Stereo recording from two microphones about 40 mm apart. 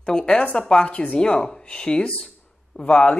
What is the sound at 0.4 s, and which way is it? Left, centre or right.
Speech, left.